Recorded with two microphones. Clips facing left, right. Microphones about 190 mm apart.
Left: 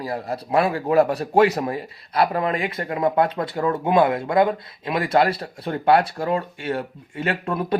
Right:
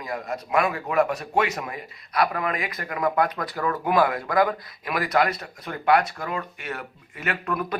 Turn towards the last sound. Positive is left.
turn(degrees=30)  # may be behind; listen again after turning